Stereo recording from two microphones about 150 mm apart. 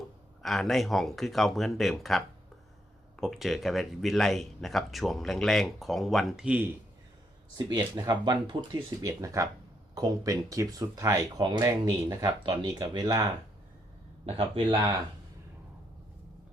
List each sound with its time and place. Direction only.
0.4 s speech: centre (ahead or behind)
7.6 s speech: 30° right (ahead or behind)
14.3 s speech: 35° right (ahead or behind)